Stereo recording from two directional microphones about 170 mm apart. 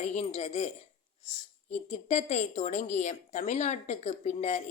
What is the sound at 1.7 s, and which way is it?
A woman's voice, 40° left (ahead or behind).